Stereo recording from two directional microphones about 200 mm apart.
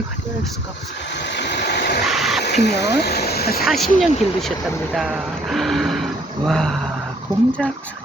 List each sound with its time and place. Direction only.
1.1 s vehicle: 60° left (ahead or behind)
2.0 s a sound: centre (ahead or behind)
2.4 s speech: 55° left (ahead or behind)
3.7 s speech: centre (ahead or behind)
7.3 s speech: 20° left (ahead or behind)